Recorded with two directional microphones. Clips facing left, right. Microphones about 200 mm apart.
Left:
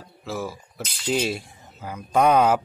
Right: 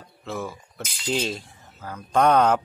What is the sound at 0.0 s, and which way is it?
Speech, 5° left (ahead or behind).